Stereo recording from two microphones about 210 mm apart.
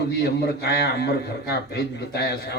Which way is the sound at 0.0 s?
55° left (ahead or behind).